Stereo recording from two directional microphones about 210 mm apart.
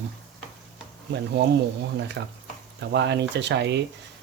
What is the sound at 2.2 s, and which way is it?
Speech, 60° right (ahead or behind).